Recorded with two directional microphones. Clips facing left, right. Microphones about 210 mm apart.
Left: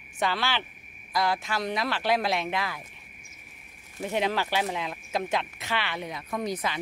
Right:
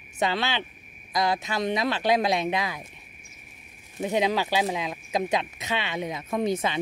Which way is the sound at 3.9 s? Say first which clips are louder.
Right 3 dB; 15° right (ahead or behind).